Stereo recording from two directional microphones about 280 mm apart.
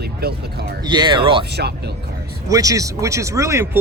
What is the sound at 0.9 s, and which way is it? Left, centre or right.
Speech, centre.